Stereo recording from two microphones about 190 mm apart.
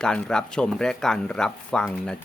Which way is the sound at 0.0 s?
5° left (ahead or behind).